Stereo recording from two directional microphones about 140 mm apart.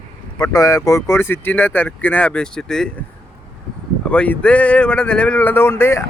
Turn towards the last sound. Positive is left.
turn(degrees=15)  # may be behind; listen again after turning